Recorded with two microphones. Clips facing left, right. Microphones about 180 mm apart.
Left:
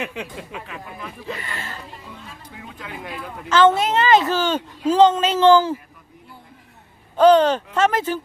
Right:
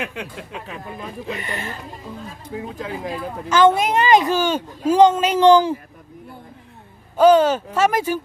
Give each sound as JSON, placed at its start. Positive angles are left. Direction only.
{"t": 0.0, "sound": "speech", "side_deg": 0}
{"t": 0.7, "sound": "speech", "side_deg": -35}
{"t": 1.3, "sound": "speech", "side_deg": -20}
{"t": 2.2, "sound": "speech", "side_deg": -35}
{"t": 3.5, "sound": "a woman's voice", "side_deg": -10}
{"t": 7.2, "sound": "a woman's voice", "side_deg": -10}